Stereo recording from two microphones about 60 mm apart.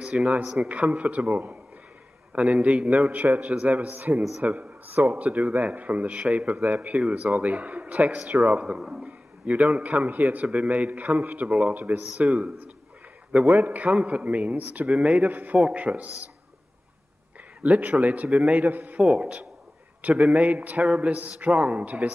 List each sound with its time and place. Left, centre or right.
0.0 s a man's voice: centre
8.7 s a man's voice: centre
9.0 s a man's voice: right
17.6 s a man's voice: right
18.6 s a man's voice: right
18.9 s a man's voice: centre